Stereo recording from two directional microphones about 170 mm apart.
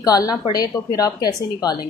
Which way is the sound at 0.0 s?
20° left (ahead or behind).